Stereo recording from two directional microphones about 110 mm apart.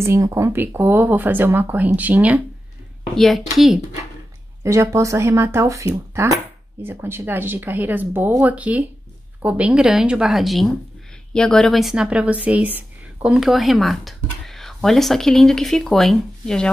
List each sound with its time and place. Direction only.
0.0 s speech: 25° right (ahead or behind)
3.2 s a woman's voice: centre (ahead or behind)
4.6 s a woman's voice: 25° right (ahead or behind); by 16.6 s 5° left (ahead or behind)